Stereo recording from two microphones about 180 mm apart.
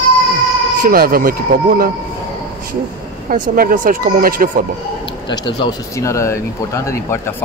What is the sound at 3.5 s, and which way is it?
Speech, 50° right (ahead or behind).